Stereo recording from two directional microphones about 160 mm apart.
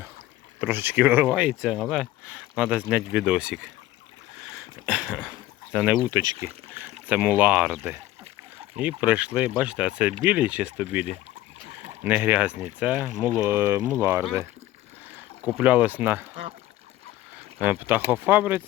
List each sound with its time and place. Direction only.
0.6 s speech: 10° right (ahead or behind)
4.5 s a sound: 5° right (ahead or behind)
5.7 s speech: 5° right (ahead or behind)
6.1 s speech: 20° right (ahead or behind)
11.6 s bleat: 40° right (ahead or behind)
12.0 s speech: 10° right (ahead or behind)
15.5 s speech: 10° right (ahead or behind)
17.6 s speech: 10° right (ahead or behind)